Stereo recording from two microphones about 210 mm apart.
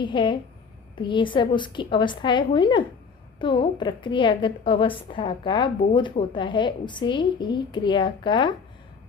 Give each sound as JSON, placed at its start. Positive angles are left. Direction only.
{"t": 0.0, "sound": "a woman's voice", "side_deg": 20}